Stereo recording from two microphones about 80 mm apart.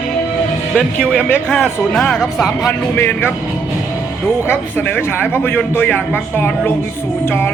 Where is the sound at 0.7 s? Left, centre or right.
Centre.